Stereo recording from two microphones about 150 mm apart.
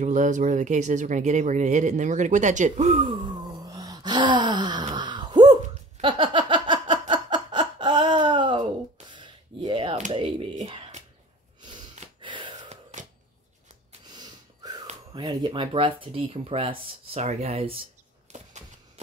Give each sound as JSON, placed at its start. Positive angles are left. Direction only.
{"t": 0.0, "sound": "speech", "side_deg": -55}
{"t": 4.9, "sound": "a sound", "side_deg": -30}
{"t": 12.2, "sound": "gasp", "side_deg": -30}
{"t": 14.0, "sound": "gasp", "side_deg": -30}
{"t": 15.1, "sound": "speech", "side_deg": -30}